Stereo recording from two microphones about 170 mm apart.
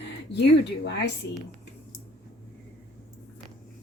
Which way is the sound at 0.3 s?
90° left.